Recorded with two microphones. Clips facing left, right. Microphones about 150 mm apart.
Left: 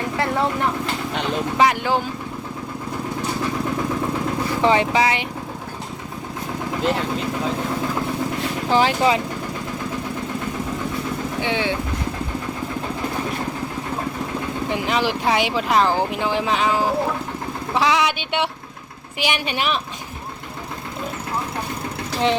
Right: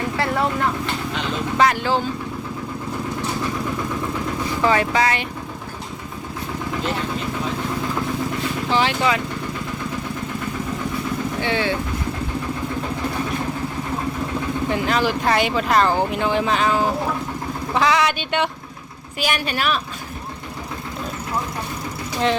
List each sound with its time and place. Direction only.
0.2 s vehicle: 20° left (ahead or behind)
1.5 s speech: 15° left (ahead or behind)
4.6 s speech: 20° left (ahead or behind)
8.7 s speech: 40° left (ahead or behind)
11.3 s speech: 15° left (ahead or behind)
14.7 s speech: 10° left (ahead or behind)